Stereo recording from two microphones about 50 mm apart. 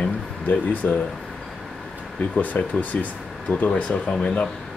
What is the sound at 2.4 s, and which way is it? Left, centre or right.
Speech, left.